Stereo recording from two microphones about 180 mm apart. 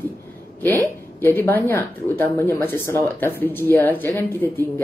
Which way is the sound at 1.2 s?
10° left (ahead or behind).